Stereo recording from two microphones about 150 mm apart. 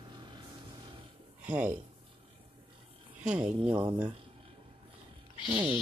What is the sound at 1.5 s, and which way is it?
Speech, 10° right (ahead or behind).